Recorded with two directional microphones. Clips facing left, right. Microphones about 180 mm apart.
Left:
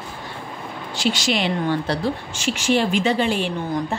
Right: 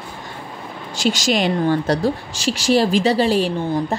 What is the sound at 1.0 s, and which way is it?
A woman's voice, 40° right (ahead or behind).